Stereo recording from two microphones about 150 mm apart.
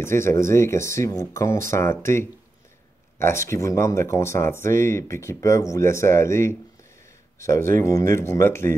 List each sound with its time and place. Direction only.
0.0 s speech: 15° left (ahead or behind)